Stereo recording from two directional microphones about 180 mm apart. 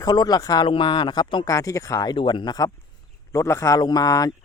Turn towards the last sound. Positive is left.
turn(degrees=20)  # may be behind; listen again after turning